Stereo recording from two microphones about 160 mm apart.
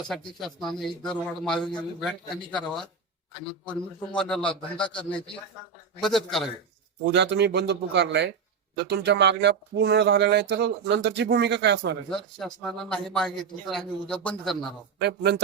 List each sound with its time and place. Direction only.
0.3 s a man's voice: centre (ahead or behind)
7.0 s speech: 90° right
12.0 s speech: 5° left (ahead or behind)
15.0 s speech: 90° right